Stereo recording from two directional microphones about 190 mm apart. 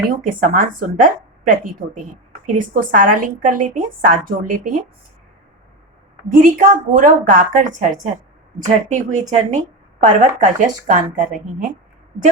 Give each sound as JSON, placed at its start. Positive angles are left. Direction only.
{"t": 0.1, "sound": "a woman's voice", "side_deg": -45}
{"t": 2.7, "sound": "a woman's voice", "side_deg": -45}
{"t": 6.4, "sound": "a woman's voice", "side_deg": -50}